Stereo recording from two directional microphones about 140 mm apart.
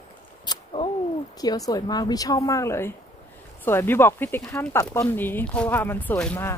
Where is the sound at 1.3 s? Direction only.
25° left (ahead or behind).